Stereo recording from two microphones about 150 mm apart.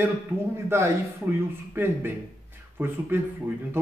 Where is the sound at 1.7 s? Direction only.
15° right (ahead or behind).